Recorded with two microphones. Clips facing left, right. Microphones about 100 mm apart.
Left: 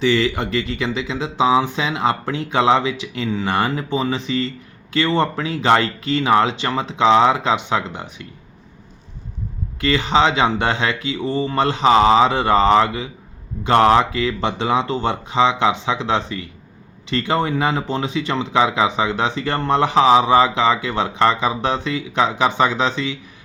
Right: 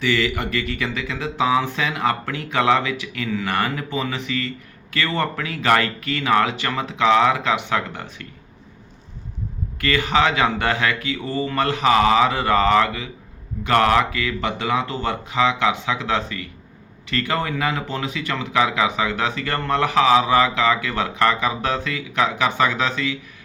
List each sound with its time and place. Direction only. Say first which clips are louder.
0.0 s speech: left 4 dB; 25° left (ahead or behind)
9.8 s speech: left 3 dB; 25° left (ahead or behind)